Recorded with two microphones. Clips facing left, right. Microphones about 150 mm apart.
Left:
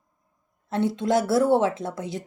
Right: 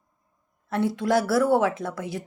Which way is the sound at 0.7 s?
25° left (ahead or behind).